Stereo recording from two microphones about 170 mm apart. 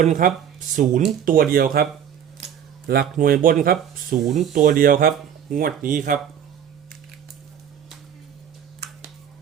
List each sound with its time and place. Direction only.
0.0 s speech: 50° right (ahead or behind)
4.3 s speech: centre (ahead or behind)
4.5 s speech: 55° right (ahead or behind)